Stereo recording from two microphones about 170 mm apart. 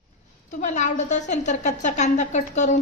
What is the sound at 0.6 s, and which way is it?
A woman's voice, 45° left (ahead or behind).